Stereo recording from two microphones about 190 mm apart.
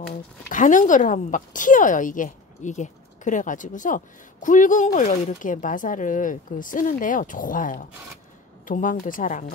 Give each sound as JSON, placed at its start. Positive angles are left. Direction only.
{"t": 0.5, "sound": "a woman's voice", "side_deg": 45}